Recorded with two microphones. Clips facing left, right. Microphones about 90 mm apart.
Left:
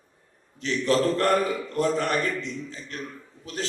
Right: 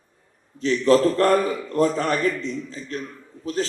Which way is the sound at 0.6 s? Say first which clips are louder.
Right 6 dB; 35° right (ahead or behind).